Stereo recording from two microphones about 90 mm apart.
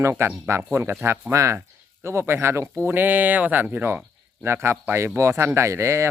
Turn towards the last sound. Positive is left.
turn(degrees=-30)  # may be behind; listen again after turning